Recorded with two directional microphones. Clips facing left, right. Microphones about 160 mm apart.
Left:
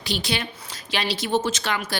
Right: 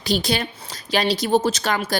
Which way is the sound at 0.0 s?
40° right (ahead or behind).